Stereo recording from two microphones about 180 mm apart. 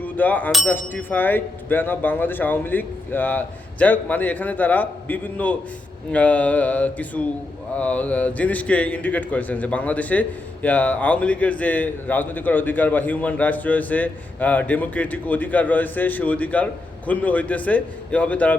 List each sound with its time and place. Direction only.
0.0 s a man's voice: 10° left (ahead or behind)